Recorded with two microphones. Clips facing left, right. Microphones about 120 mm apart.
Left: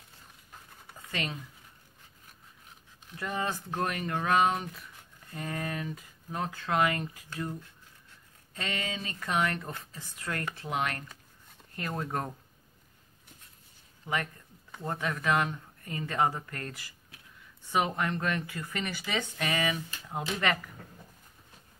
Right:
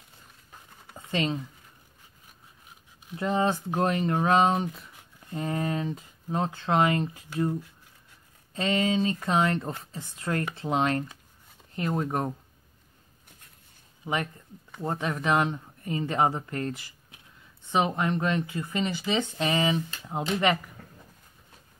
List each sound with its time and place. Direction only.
0.9 s a sound: 25° right (ahead or behind)
3.2 s speech: 25° right (ahead or behind)
8.5 s speech: 20° right (ahead or behind)
14.0 s speech: 20° right (ahead or behind)